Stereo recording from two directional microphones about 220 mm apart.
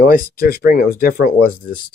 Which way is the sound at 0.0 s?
40° left (ahead or behind).